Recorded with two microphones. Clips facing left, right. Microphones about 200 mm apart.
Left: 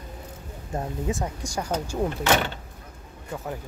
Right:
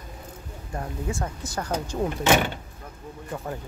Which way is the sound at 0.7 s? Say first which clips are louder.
Left 3 dB; 15° left (ahead or behind).